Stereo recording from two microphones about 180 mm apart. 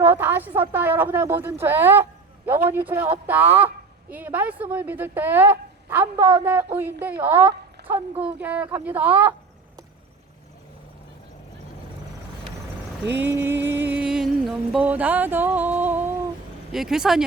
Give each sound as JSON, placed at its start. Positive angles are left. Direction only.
{"t": 0.0, "sound": "speech", "side_deg": -10}
{"t": 4.1, "sound": "speech", "side_deg": -10}
{"t": 7.8, "sound": "a sound", "side_deg": -65}
{"t": 8.2, "sound": "speech", "side_deg": -10}
{"t": 13.1, "sound": "music", "side_deg": -10}
{"t": 16.7, "sound": "speech", "side_deg": 0}